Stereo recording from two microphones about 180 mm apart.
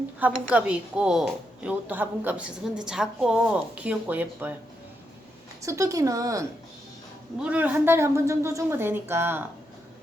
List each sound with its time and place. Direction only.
0.2 s a woman's voice: 10° right (ahead or behind)
5.6 s a woman's voice: 15° right (ahead or behind)
7.3 s a woman's voice: 5° right (ahead or behind)